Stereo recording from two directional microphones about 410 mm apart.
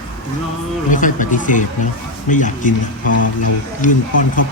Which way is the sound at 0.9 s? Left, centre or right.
Centre.